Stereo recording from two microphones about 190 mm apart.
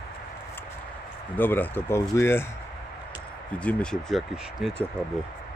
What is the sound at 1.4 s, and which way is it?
Speech, 10° left (ahead or behind).